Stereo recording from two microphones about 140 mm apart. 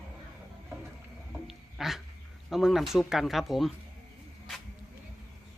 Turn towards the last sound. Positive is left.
turn(degrees=0)  # may be behind; listen again after turning